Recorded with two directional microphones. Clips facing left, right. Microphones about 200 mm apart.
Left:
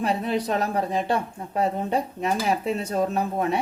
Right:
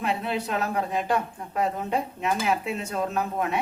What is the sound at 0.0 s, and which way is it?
Speech, 35° left (ahead or behind).